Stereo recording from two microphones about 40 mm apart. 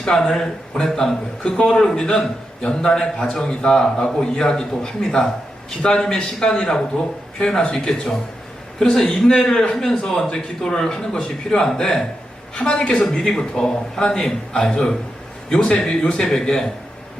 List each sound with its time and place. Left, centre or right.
0.0 s a man's voice: centre
13.3 s a man's voice: centre